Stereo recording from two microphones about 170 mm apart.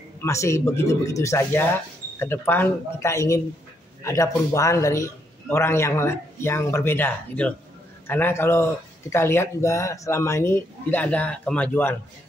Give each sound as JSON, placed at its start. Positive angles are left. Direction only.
{"t": 0.2, "sound": "a man's voice", "side_deg": 15}